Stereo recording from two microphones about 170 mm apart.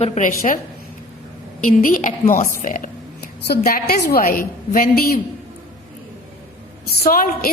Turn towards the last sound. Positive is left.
turn(degrees=60)  # may be behind; listen again after turning